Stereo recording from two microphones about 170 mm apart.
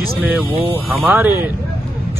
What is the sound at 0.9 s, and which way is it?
Speech, 10° right (ahead or behind).